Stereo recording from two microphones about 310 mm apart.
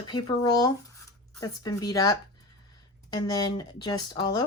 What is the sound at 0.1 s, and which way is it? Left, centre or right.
Speech, centre.